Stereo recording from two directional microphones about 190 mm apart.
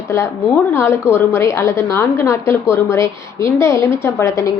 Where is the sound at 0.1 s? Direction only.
15° left (ahead or behind).